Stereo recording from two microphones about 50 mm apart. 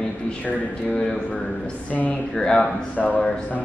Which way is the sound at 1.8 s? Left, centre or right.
Left.